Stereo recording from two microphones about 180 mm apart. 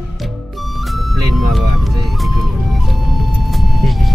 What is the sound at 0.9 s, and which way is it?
Music, centre (ahead or behind).